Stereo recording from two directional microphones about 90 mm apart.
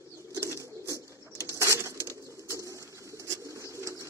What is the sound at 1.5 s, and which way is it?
Bird, 30° right (ahead or behind).